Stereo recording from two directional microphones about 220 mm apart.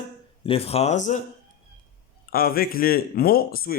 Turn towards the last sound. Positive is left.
turn(degrees=45)  # may be behind; listen again after turning